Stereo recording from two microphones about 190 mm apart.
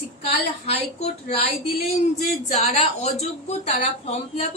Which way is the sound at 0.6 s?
35° left (ahead or behind).